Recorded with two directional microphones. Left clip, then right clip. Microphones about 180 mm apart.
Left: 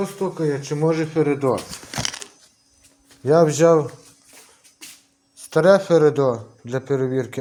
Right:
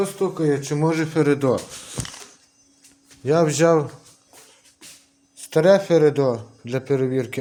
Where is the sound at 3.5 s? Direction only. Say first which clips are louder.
Left 2 dB; 10° right (ahead or behind).